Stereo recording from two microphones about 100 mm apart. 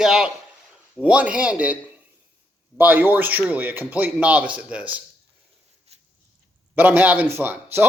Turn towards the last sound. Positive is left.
turn(degrees=-20)  # may be behind; listen again after turning